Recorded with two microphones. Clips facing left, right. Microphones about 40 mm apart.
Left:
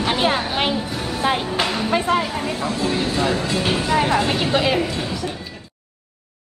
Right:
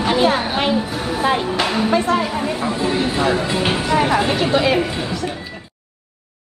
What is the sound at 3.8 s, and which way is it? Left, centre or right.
Speech, centre.